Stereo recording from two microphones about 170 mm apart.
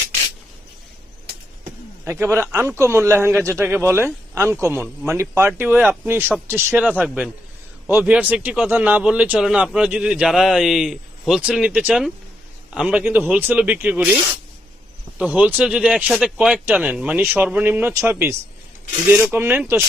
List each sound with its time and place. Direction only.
2.0 s a man's voice: 15° right (ahead or behind)
15.2 s speech: 10° right (ahead or behind)